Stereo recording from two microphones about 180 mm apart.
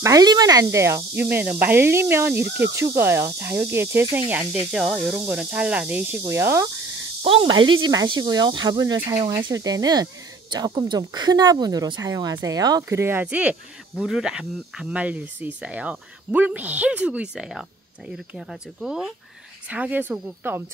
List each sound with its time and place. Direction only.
0.0 s speech: 20° right (ahead or behind)
7.2 s speech: 25° right (ahead or behind)